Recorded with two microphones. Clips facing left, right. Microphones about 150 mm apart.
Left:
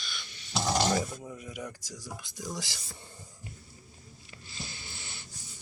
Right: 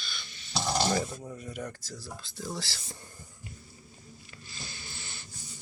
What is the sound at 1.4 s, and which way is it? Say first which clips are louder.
Speech: right 2 dB; 10° left (ahead or behind).